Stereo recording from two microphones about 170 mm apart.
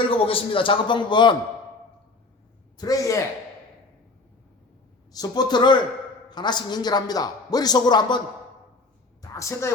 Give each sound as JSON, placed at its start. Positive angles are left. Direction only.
{"t": 0.0, "sound": "a man's voice", "side_deg": 30}
{"t": 2.7, "sound": "a man's voice", "side_deg": 20}
{"t": 5.1, "sound": "a man's voice", "side_deg": 25}
{"t": 9.2, "sound": "a woman's voice", "side_deg": 20}